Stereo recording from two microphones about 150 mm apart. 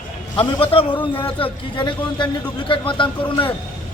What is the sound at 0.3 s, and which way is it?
Speech, 35° left (ahead or behind).